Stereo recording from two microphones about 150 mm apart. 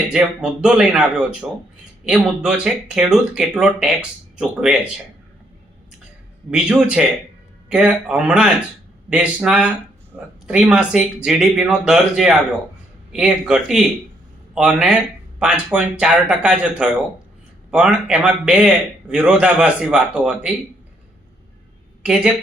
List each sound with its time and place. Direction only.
0.1 s a man's voice: 5° right (ahead or behind)
6.5 s a man's voice: 5° right (ahead or behind)
22.0 s speech: 5° right (ahead or behind)